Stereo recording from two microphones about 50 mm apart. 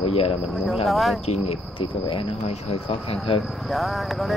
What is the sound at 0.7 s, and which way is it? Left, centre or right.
Speech, centre.